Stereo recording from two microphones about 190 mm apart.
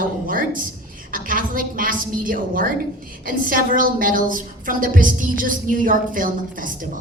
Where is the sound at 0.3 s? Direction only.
45° right (ahead or behind).